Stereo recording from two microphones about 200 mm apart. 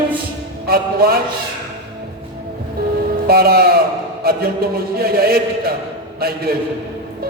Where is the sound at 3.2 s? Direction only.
50° right (ahead or behind).